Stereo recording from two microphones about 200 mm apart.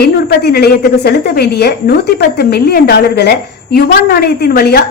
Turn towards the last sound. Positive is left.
turn(degrees=50)  # may be behind; listen again after turning